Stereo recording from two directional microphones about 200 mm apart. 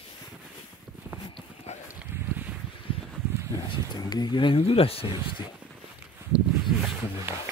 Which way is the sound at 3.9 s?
20° left (ahead or behind).